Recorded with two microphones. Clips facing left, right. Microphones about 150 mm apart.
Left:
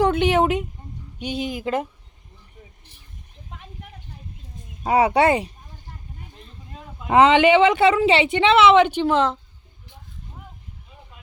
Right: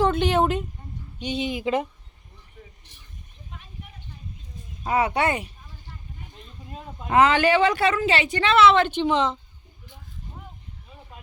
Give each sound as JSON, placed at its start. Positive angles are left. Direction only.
{"t": 0.0, "sound": "a woman's voice", "side_deg": 15}
{"t": 3.5, "sound": "a sound", "side_deg": 90}
{"t": 5.1, "sound": "speech", "side_deg": 35}
{"t": 7.1, "sound": "a woman's voice", "side_deg": 25}